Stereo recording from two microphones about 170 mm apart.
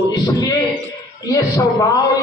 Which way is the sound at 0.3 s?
20° left (ahead or behind).